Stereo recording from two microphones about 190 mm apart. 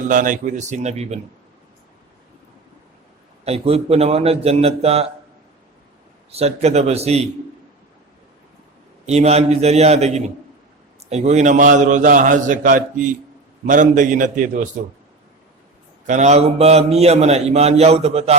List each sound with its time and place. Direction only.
0.1 s a man's voice: 45° right (ahead or behind)
3.4 s a man's voice: 30° right (ahead or behind)
6.3 s a man's voice: 35° right (ahead or behind)
9.0 s a man's voice: 35° right (ahead or behind)
16.0 s a man's voice: 40° right (ahead or behind)